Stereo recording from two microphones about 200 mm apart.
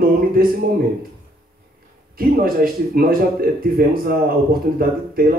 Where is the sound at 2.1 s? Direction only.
45° right (ahead or behind).